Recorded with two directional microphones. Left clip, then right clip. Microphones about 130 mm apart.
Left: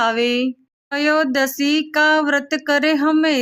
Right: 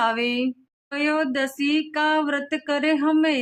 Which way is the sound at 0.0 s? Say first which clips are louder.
Left 5 dB; 25° left (ahead or behind).